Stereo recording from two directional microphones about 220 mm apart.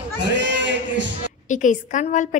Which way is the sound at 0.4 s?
55° right (ahead or behind).